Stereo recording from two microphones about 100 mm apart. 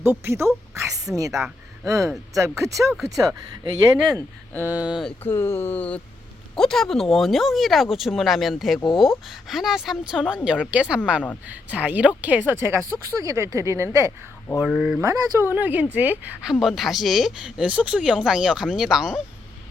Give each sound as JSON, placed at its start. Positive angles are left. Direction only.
{"t": 0.0, "sound": "speech", "side_deg": -25}
{"t": 4.6, "sound": "speech", "side_deg": -15}
{"t": 5.2, "sound": "speech", "side_deg": 25}
{"t": 6.6, "sound": "speech", "side_deg": 5}
{"t": 12.5, "sound": "speech", "side_deg": -25}
{"t": 14.6, "sound": "speech", "side_deg": -5}
{"t": 15.0, "sound": "speech", "side_deg": -35}
{"t": 15.5, "sound": "speech", "side_deg": -15}
{"t": 16.5, "sound": "speech", "side_deg": 0}